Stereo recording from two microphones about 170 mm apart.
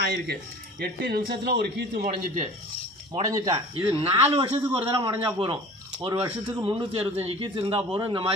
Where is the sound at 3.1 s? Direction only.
20° right (ahead or behind).